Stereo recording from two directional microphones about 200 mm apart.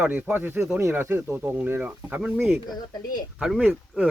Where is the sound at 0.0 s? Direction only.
5° right (ahead or behind).